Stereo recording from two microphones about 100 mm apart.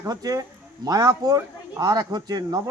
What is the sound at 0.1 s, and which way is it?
A man's voice, 40° right (ahead or behind).